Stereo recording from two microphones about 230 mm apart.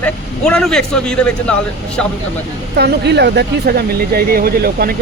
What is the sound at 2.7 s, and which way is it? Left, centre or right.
Speech, right.